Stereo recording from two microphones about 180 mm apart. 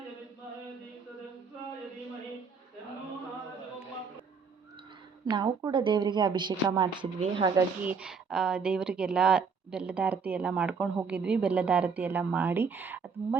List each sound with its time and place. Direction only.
5.2 s speech: 20° right (ahead or behind)
7.9 s a woman's voice: 5° right (ahead or behind)